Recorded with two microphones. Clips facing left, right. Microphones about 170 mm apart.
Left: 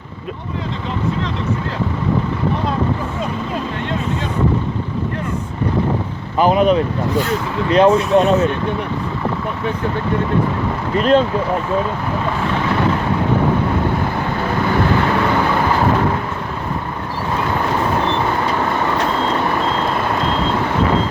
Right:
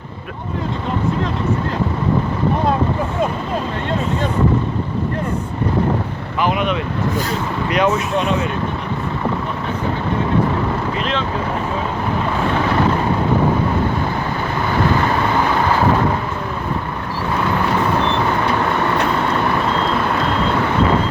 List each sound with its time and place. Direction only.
6.4 s speech: 35° left (ahead or behind)
10.9 s speech: 40° left (ahead or behind)